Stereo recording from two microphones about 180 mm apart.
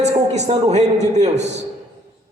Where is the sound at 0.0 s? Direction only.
40° right (ahead or behind).